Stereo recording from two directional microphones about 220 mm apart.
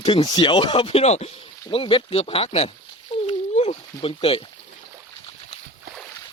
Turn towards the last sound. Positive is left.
turn(degrees=25)  # may be behind; listen again after turning